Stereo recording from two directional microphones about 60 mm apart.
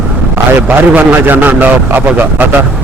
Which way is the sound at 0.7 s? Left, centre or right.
Right.